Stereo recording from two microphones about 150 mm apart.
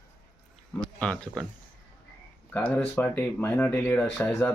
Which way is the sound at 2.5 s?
10° left (ahead or behind).